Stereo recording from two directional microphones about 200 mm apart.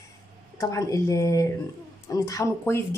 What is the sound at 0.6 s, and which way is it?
A woman's voice, 15° left (ahead or behind).